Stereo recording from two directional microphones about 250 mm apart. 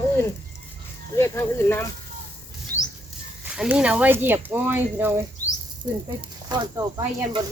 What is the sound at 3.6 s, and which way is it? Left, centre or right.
Speech, centre.